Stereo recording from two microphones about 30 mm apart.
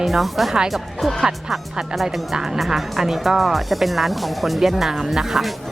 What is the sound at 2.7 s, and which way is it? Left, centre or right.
Speech, centre.